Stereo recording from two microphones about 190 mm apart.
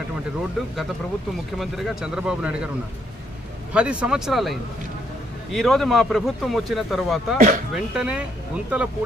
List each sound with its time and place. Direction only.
1.6 s speech: centre (ahead or behind)
3.7 s speech: 5° right (ahead or behind)
7.3 s speech: 45° right (ahead or behind)
7.7 s speech: 5° right (ahead or behind)